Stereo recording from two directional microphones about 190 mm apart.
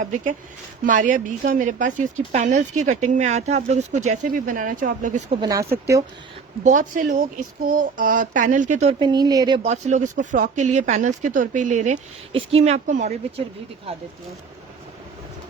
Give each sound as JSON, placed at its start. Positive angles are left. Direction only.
{"t": 0.0, "sound": "speech", "side_deg": -40}
{"t": 5.4, "sound": "speech", "side_deg": -15}
{"t": 6.7, "sound": "speech", "side_deg": -45}
{"t": 9.0, "sound": "speech", "side_deg": -20}
{"t": 9.6, "sound": "speech", "side_deg": -40}